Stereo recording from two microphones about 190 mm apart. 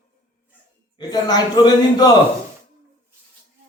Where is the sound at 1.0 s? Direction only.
20° left (ahead or behind).